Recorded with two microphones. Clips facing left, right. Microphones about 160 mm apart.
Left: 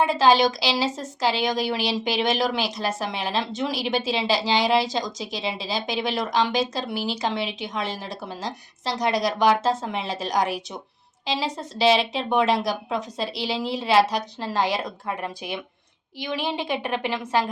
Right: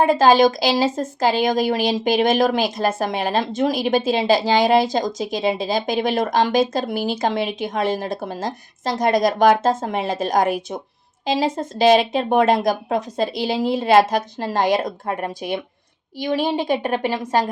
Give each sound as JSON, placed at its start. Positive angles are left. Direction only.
{"t": 0.0, "sound": "a woman's voice", "side_deg": -50}